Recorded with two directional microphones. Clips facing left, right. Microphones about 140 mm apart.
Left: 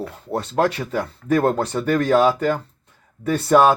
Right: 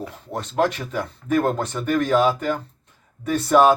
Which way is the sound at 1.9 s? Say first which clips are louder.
Left 2 dB; 15° right (ahead or behind).